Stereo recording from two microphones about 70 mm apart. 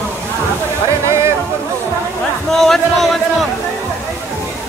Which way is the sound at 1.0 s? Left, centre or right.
Right.